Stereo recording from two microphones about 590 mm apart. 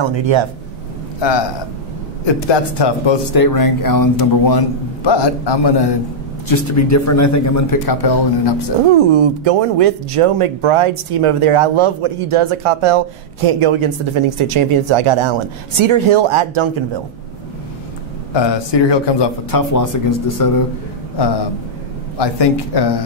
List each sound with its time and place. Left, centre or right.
0.1 s speech: right
2.2 s speech: left
6.5 s a man's voice: left
8.9 s speech: right
18.3 s a man's voice: left
19.7 s speech: left
22.2 s speech: left